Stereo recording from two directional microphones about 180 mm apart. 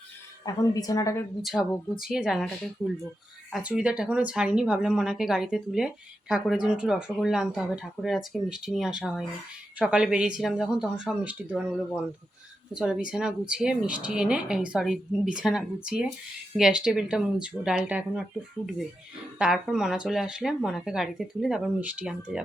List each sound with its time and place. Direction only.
0.4 s speech: 20° left (ahead or behind)
1.4 s speech: centre (ahead or behind)
2.8 s speech: 10° left (ahead or behind)
3.5 s speech: 5° right (ahead or behind)
12.7 s speech: 5° right (ahead or behind)